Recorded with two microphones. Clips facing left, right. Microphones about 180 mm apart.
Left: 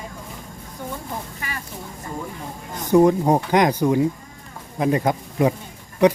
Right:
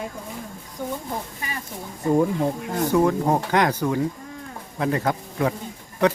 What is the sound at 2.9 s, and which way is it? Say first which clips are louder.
Speech: left 6 dB; 15° left (ahead or behind).